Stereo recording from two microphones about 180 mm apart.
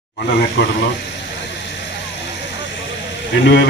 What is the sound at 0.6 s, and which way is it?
Speech, 80° left.